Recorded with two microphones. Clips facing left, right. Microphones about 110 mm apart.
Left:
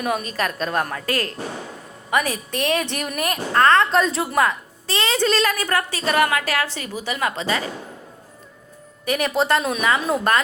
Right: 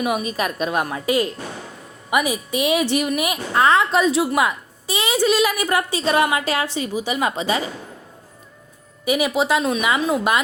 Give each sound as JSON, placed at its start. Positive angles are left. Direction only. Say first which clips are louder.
{"t": 0.0, "sound": "speech", "louder": "right 2 dB", "side_deg": -10}
{"t": 9.0, "sound": "a woman's voice", "louder": "right 1 dB", "side_deg": -5}